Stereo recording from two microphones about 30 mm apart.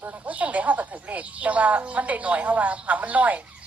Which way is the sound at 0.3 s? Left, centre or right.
Right.